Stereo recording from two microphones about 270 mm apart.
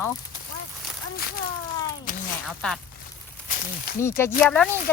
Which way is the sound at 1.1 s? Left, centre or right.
Left.